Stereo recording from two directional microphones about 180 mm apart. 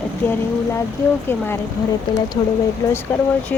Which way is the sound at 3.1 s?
10° left (ahead or behind).